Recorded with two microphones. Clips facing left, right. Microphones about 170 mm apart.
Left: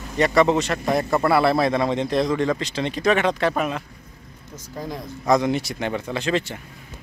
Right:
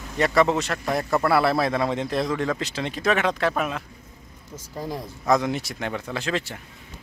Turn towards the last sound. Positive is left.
turn(degrees=0)  # may be behind; listen again after turning